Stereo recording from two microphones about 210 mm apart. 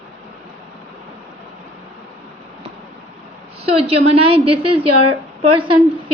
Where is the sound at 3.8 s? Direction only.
30° right (ahead or behind).